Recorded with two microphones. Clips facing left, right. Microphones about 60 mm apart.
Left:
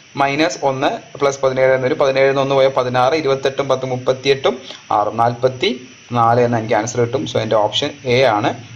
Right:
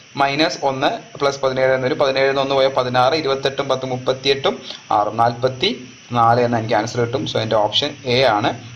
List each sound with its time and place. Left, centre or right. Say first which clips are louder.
0.2 s a man's voice: left 2 dB; centre